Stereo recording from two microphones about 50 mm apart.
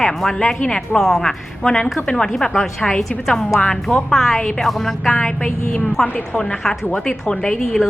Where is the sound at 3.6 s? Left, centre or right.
Centre.